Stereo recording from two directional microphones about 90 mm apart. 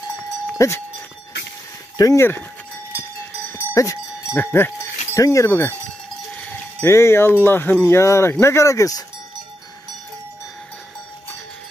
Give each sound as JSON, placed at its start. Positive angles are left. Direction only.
{"t": 0.6, "sound": "speech", "side_deg": 25}
{"t": 2.0, "sound": "speech", "side_deg": 40}
{"t": 3.5, "sound": "wind chime", "side_deg": 35}
{"t": 5.1, "sound": "speech", "side_deg": 35}
{"t": 6.3, "sound": "cowbell", "side_deg": 15}
{"t": 6.8, "sound": "speech", "side_deg": 30}